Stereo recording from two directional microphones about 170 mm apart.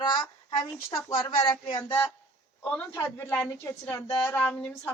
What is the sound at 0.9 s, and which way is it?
A woman's voice, 15° left (ahead or behind).